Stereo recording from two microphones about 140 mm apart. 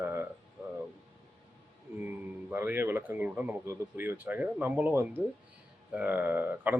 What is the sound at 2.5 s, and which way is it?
Speech, 15° right (ahead or behind).